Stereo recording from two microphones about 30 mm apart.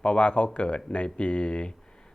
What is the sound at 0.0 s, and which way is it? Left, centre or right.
Speech, left.